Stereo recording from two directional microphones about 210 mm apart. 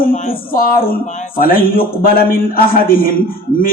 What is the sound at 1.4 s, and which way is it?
A man's voice, 45° left (ahead or behind).